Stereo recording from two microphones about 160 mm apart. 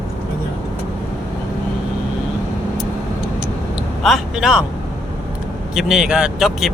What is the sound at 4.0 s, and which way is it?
Speech, centre (ahead or behind).